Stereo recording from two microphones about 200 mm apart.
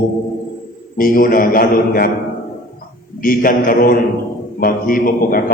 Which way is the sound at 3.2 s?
45° left (ahead or behind).